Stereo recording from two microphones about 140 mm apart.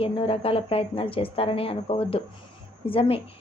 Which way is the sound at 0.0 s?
45° left (ahead or behind).